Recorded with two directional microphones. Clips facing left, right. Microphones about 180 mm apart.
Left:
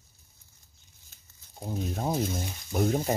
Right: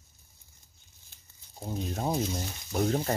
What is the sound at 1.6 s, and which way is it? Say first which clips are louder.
Speech: left 1 dB; 5° left (ahead or behind).